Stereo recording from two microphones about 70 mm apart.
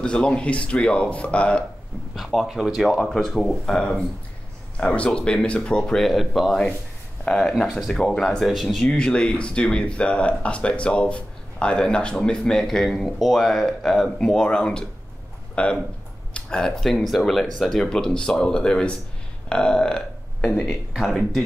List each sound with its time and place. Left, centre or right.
0.0 s speech: centre
2.1 s speech: centre
4.7 s speech: centre
8.9 s speech: centre
14.1 s speech: centre